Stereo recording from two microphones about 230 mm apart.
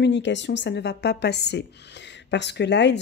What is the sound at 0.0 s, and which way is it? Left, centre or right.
A woman's voice, left.